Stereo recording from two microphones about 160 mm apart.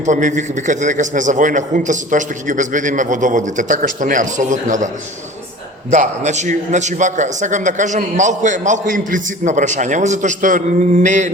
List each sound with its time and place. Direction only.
0.0 s a man's voice: 50° right (ahead or behind)
5.9 s a man's voice: 50° right (ahead or behind)